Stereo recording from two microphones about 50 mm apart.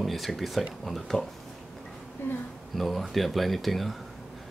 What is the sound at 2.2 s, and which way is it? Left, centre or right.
Speech, left.